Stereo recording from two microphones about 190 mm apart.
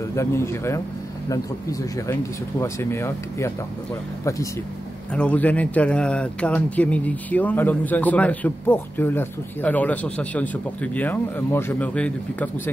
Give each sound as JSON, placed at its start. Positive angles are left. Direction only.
{"t": 0.1, "sound": "speech", "side_deg": 15}
{"t": 5.1, "sound": "speech", "side_deg": 5}